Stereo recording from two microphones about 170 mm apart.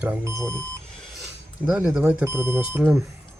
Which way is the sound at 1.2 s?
10° right (ahead or behind).